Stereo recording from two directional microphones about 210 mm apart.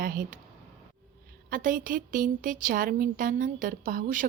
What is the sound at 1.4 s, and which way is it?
A woman's voice, 40° right (ahead or behind).